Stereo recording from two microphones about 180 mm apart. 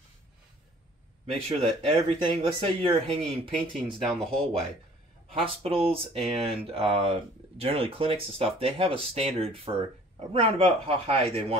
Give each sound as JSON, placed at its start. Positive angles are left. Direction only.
{"t": 1.2, "sound": "speech", "side_deg": -35}
{"t": 3.7, "sound": "speech", "side_deg": 5}
{"t": 5.3, "sound": "speech", "side_deg": -30}